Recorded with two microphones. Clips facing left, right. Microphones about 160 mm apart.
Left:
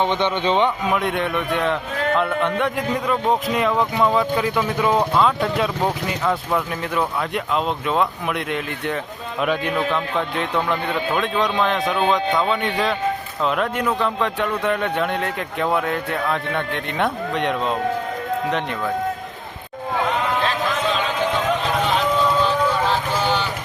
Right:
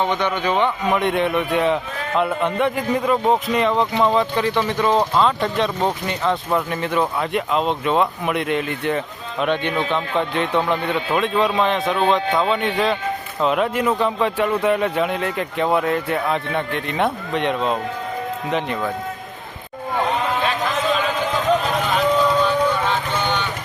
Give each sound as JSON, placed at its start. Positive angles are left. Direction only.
{"t": 0.0, "sound": "a man's voice", "side_deg": 20}
{"t": 0.9, "sound": "a man's voice", "side_deg": 0}
{"t": 21.6, "sound": "vehicle", "side_deg": 0}